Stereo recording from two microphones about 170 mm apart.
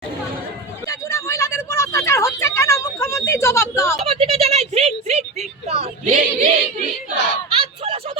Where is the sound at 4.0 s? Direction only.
35° right (ahead or behind).